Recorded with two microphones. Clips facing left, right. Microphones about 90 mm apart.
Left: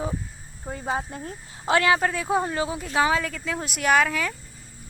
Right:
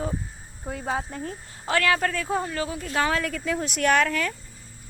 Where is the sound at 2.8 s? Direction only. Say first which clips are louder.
Left 2 dB; 10° left (ahead or behind).